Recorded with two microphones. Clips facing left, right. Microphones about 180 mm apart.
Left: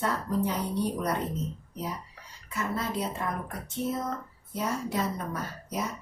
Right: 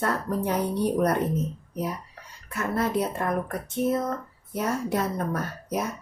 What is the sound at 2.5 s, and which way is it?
A woman's voice, 60° right (ahead or behind).